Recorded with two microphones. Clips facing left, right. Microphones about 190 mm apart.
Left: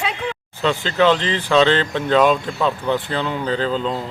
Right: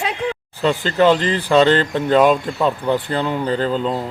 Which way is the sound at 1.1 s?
45° right (ahead or behind).